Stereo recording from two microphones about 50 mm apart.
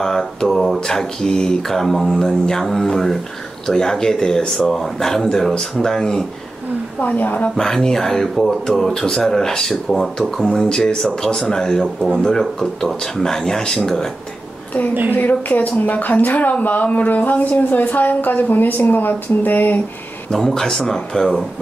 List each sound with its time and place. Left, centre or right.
0.0 s speech: centre
7.0 s a woman's voice: left
7.4 s speech: centre
10.5 s speech: centre
15.1 s speech: left
20.2 s speech: centre